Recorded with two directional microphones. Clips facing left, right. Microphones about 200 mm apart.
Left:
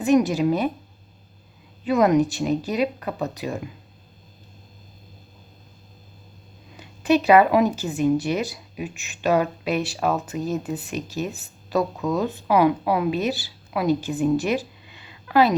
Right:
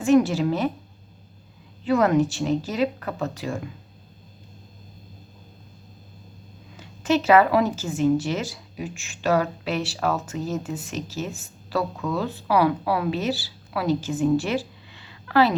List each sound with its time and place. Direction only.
0.0 s speech: 15° left (ahead or behind)
1.8 s speech: 15° left (ahead or behind)
6.7 s speech: 15° left (ahead or behind)